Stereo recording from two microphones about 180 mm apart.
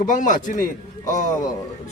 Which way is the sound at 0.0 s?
45° left (ahead or behind).